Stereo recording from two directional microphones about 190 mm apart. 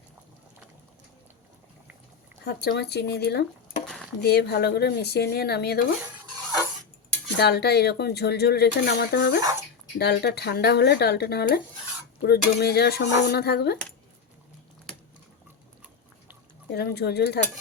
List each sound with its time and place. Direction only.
2.4 s speech: 60° left (ahead or behind)
3.8 s a sound: centre (ahead or behind)
4.2 s speech: 60° left (ahead or behind)
7.3 s speech: 60° left (ahead or behind)
16.7 s speech: 60° left (ahead or behind)